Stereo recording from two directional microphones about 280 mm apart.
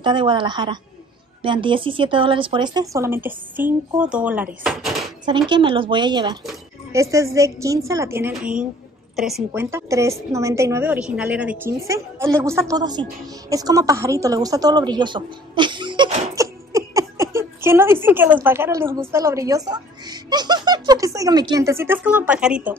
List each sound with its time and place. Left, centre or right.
0.0 s speech: centre
5.5 s a woman's voice: centre